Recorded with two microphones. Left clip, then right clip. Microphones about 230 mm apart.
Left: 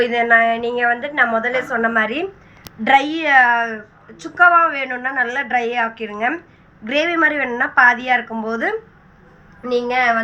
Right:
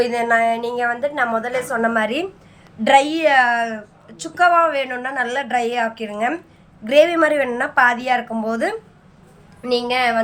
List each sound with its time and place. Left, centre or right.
0.0 s a woman's voice: centre